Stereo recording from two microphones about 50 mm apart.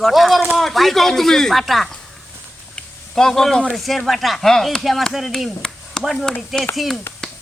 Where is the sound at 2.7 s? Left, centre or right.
Centre.